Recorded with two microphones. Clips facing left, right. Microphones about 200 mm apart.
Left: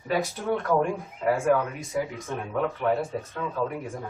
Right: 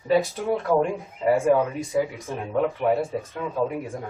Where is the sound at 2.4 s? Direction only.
30° right (ahead or behind).